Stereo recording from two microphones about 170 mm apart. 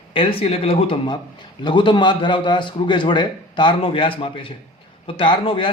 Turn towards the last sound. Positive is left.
turn(degrees=30)  # may be behind; listen again after turning